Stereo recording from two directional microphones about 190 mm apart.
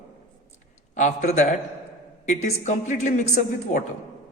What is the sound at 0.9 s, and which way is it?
A man's voice, 40° left (ahead or behind).